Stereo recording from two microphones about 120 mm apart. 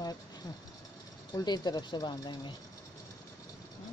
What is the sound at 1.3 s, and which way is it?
Speech, 35° left (ahead or behind).